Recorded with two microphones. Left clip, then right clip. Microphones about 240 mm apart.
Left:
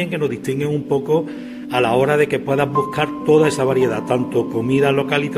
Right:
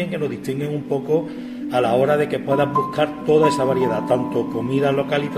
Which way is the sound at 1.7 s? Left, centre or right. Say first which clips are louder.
Left 2 dB; left.